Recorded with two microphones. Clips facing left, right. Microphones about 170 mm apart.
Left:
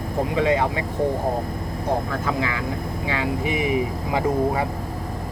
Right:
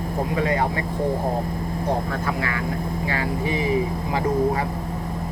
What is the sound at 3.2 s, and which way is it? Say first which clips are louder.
Mantra: left 1 dB; 20° left (ahead or behind).